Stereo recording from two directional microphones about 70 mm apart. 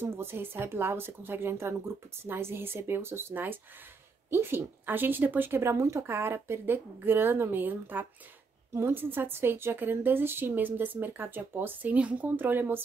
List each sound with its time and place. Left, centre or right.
0.0 s a woman's voice: right